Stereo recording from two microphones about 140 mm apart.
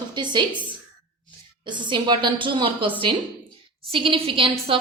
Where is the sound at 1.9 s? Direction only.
35° right (ahead or behind).